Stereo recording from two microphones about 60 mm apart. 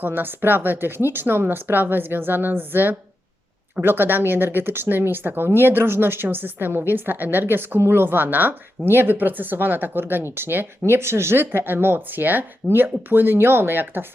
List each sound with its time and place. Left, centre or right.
0.0 s a woman's voice: right